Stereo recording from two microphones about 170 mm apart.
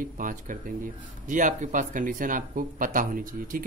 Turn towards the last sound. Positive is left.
turn(degrees=-55)  # may be behind; listen again after turning